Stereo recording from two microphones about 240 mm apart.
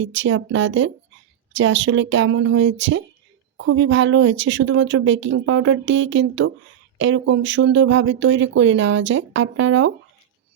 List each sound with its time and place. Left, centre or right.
0.0 s speech: right